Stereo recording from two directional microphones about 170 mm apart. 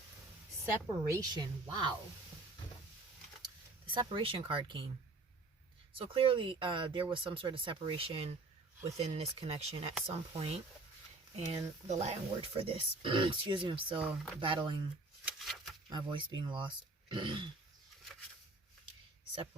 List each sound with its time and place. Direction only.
0.6 s a woman's voice: 20° right (ahead or behind)
3.4 s speech: 30° right (ahead or behind)
5.9 s speech: 30° right (ahead or behind)
11.9 s a woman's voice: 40° right (ahead or behind)
15.2 s shuffling cards: centre (ahead or behind)
15.9 s a woman's voice: 25° right (ahead or behind)